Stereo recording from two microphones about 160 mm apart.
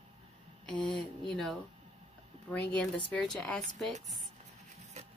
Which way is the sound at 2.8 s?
5° left (ahead or behind).